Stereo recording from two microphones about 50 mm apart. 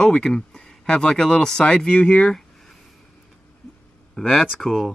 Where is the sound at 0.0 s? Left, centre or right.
Centre.